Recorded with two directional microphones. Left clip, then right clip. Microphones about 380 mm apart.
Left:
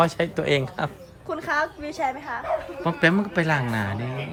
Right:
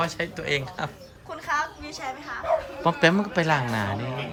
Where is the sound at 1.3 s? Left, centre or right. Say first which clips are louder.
Left 2 dB; left.